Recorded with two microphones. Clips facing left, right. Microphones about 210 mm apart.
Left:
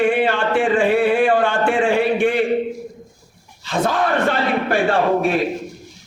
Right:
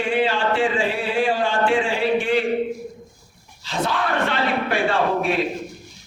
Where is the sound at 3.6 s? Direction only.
50° left (ahead or behind).